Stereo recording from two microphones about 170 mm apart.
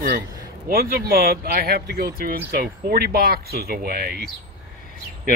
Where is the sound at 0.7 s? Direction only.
60° right (ahead or behind).